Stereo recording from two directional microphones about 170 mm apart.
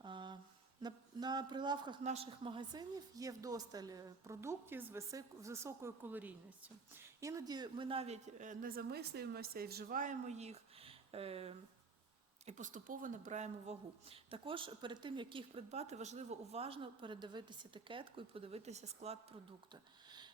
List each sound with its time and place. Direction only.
0.0 s mantra: 25° right (ahead or behind)
0.8 s a woman's voice: 25° right (ahead or behind)
19.7 s speech: 25° right (ahead or behind)